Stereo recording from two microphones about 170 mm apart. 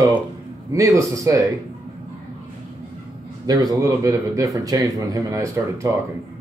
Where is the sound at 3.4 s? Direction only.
20° right (ahead or behind).